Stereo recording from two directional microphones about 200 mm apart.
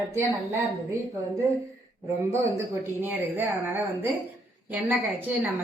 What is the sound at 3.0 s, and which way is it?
A woman's voice, 10° right (ahead or behind).